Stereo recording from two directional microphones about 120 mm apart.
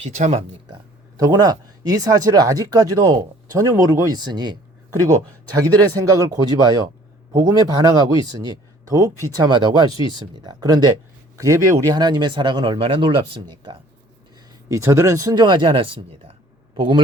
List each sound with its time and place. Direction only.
0.0 s speech: 70° right (ahead or behind)
0.7 s speech: 30° right (ahead or behind)
5.5 s speech: 30° right (ahead or behind)
14.7 s a man's voice: 25° right (ahead or behind); by 17.0 s 45° right (ahead or behind)